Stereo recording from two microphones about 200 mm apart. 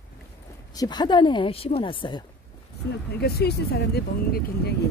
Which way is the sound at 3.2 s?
55° left (ahead or behind).